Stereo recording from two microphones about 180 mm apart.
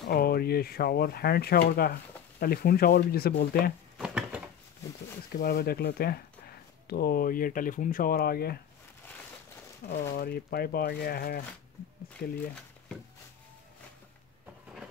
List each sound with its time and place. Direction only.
0.0 s speech: 60° left (ahead or behind)
4.0 s a sound: 5° right (ahead or behind)
5.4 s speech: 55° left (ahead or behind)
9.8 s speech: 45° left (ahead or behind)
10.1 s speech: 55° left (ahead or behind)